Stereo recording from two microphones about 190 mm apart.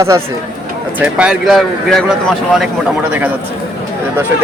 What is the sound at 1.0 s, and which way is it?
Speech, 5° right (ahead or behind).